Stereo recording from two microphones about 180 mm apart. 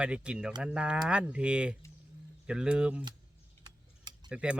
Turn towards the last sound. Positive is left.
turn(degrees=-5)  # may be behind; listen again after turning